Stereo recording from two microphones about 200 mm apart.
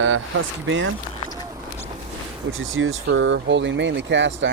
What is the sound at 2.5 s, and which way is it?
Speech, 80° right.